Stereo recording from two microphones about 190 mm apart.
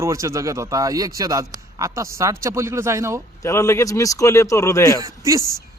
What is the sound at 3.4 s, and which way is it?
Speech, 15° left (ahead or behind).